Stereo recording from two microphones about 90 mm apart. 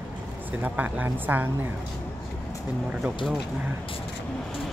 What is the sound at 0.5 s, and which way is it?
Speech, 20° right (ahead or behind).